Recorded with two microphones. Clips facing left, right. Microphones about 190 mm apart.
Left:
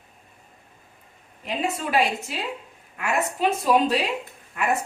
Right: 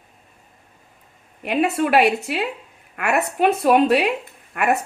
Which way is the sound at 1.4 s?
65° right (ahead or behind).